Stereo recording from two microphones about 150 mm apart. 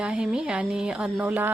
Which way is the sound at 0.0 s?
5° right (ahead or behind).